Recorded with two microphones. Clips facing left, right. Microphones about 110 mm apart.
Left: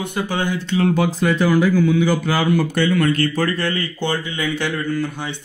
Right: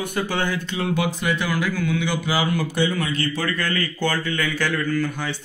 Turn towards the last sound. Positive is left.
turn(degrees=25)  # may be behind; listen again after turning